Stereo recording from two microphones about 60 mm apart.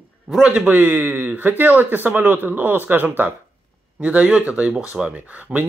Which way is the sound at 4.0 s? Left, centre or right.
Right.